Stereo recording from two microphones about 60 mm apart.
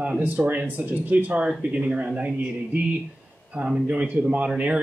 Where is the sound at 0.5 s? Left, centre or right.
Right.